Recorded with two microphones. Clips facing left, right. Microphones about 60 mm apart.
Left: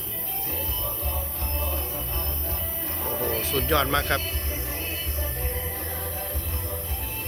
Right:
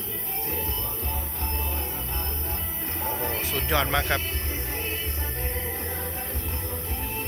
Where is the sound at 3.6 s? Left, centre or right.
Centre.